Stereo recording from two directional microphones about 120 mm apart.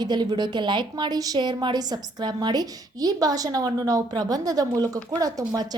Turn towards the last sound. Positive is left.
turn(degrees=-30)  # may be behind; listen again after turning